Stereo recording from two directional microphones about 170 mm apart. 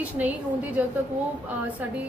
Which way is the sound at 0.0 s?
10° right (ahead or behind).